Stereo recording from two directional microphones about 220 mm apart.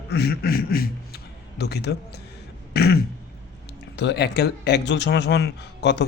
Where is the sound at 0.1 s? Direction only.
45° left (ahead or behind).